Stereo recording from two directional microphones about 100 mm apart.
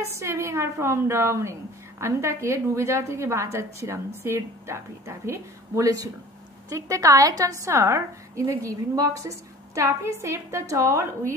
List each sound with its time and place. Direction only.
0.1 s a woman's voice: 25° right (ahead or behind)